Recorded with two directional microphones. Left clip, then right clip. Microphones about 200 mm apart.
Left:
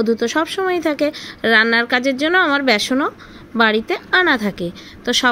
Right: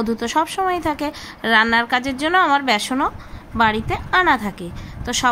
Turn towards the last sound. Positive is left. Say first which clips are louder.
# left 4 dB
turn(degrees=15)  # may be behind; listen again after turning